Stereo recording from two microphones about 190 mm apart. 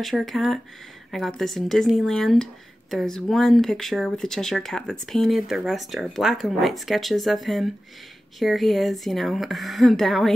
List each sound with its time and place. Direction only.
0.0 s speech: centre (ahead or behind)